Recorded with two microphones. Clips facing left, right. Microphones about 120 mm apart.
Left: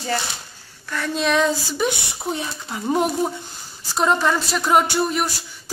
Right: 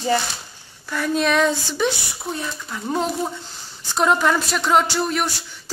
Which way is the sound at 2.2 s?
20° left (ahead or behind).